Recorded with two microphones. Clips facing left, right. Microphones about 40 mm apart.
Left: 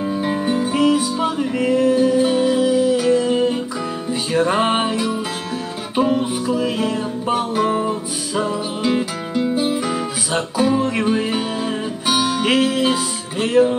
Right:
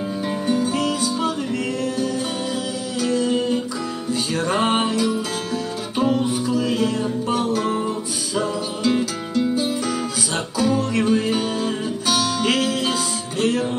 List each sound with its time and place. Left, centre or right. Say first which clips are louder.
0.0 s music: left 4 dB; centre